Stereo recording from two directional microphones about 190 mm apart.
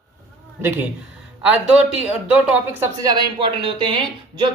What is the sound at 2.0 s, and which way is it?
Speech, 5° right (ahead or behind).